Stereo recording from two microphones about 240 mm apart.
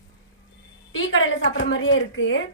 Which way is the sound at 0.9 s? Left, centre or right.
Left.